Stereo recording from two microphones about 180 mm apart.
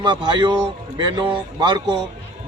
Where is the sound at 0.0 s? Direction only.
25° right (ahead or behind).